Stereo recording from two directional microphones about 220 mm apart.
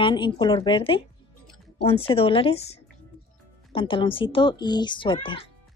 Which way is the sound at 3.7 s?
25° left (ahead or behind).